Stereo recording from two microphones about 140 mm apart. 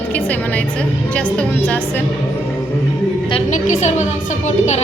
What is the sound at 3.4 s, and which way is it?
Speech, 60° left (ahead or behind).